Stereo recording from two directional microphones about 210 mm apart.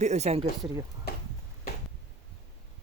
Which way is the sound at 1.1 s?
50° left (ahead or behind).